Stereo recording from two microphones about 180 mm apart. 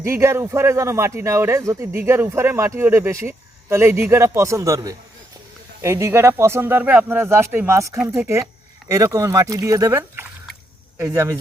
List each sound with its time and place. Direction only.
0.0 s a man's voice: 15° right (ahead or behind)